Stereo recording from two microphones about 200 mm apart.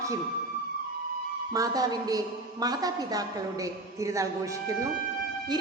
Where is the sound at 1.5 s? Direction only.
20° right (ahead or behind).